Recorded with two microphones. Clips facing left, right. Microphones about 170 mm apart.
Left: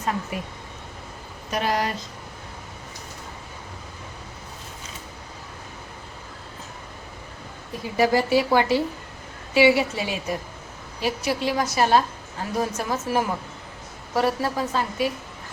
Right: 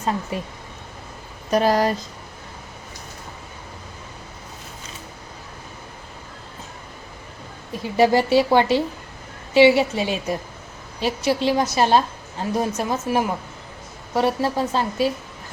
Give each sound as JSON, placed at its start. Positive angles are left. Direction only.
{"t": 0.3, "sound": "a woman's voice", "side_deg": -30}
{"t": 7.9, "sound": "a woman's voice", "side_deg": -25}